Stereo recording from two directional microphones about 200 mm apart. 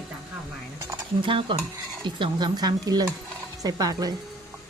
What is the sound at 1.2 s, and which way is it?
Speech, 25° right (ahead or behind).